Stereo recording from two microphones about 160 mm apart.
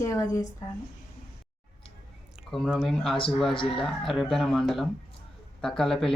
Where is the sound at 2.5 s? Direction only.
Centre (ahead or behind).